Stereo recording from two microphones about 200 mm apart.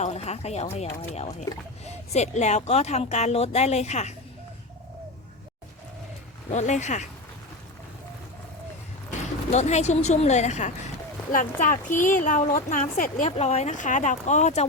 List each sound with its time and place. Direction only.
0.0 s speech: 30° left (ahead or behind)
6.5 s speech: 35° left (ahead or behind)
9.5 s speech: 35° left (ahead or behind)